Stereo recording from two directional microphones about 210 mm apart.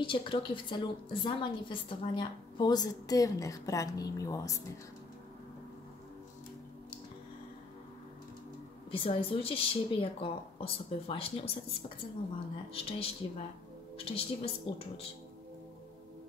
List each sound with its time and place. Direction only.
0.0 s a woman's voice: 25° left (ahead or behind)
8.9 s a woman's voice: 25° left (ahead or behind)
12.7 s a woman's voice: 25° left (ahead or behind)